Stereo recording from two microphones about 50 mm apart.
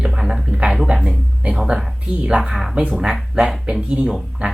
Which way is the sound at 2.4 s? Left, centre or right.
Centre.